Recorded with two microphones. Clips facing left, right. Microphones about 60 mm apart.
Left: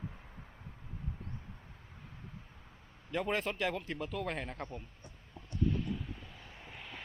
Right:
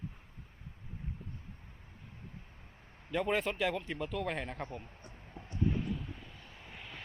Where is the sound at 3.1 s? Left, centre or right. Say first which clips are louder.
Right 2 dB; centre.